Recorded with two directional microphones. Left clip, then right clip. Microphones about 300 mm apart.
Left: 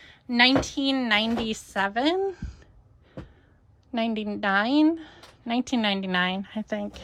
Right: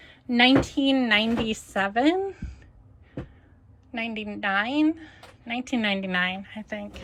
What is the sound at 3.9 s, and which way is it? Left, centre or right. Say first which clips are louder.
A woman's voice: left 3 dB; centre.